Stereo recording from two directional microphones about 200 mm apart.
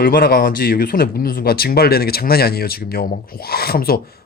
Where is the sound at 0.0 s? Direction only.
45° left (ahead or behind).